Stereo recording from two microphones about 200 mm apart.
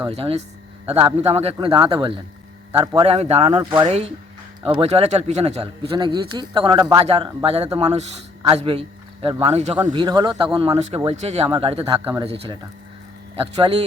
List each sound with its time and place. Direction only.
0.0 s a man's voice: 30° right (ahead or behind)
9.7 s a man's voice: 20° right (ahead or behind)